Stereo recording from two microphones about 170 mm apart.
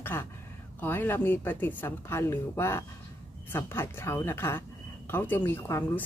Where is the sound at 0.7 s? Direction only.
10° left (ahead or behind).